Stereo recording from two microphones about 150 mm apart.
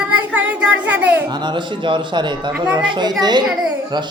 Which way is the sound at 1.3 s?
30° right (ahead or behind).